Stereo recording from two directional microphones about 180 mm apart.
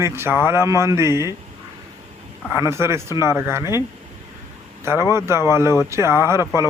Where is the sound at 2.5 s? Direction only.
15° right (ahead or behind).